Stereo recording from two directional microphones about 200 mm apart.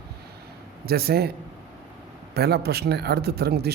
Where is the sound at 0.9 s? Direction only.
50° right (ahead or behind).